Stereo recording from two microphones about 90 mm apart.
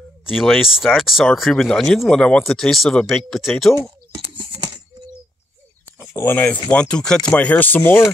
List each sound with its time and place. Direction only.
0.4 s speech: centre (ahead or behind)
4.4 s a sound: 65° right (ahead or behind)
5.9 s speech: 30° left (ahead or behind)
6.7 s speech: 10° left (ahead or behind)